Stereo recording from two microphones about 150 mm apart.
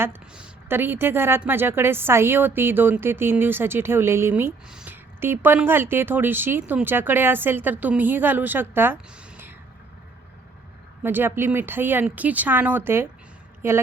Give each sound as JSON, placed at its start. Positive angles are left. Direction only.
{"t": 0.0, "sound": "a woman's voice", "side_deg": -10}
{"t": 4.7, "sound": "a sound", "side_deg": -5}
{"t": 5.2, "sound": "a woman's voice", "side_deg": -15}
{"t": 11.0, "sound": "a woman's voice", "side_deg": -15}